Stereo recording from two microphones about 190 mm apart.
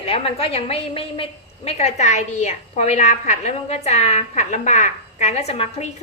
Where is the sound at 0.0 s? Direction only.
30° left (ahead or behind).